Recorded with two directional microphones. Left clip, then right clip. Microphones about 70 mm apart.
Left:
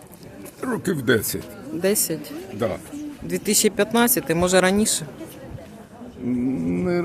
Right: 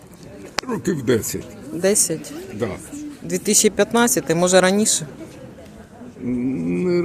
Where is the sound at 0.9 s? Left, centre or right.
Left.